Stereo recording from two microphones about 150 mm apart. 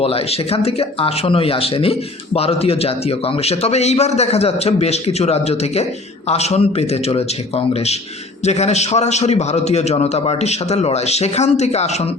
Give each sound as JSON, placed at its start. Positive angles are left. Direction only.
{"t": 0.0, "sound": "a man's voice", "side_deg": 40}